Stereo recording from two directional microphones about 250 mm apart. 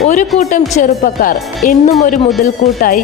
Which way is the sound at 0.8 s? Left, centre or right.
Left.